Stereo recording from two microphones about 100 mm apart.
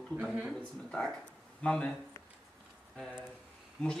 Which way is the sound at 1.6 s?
10° left (ahead or behind).